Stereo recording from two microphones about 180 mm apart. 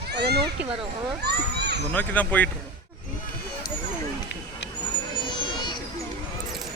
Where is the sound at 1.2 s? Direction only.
65° right (ahead or behind).